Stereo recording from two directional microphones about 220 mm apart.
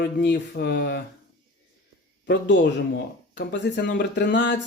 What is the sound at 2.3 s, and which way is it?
Speech, 55° left (ahead or behind).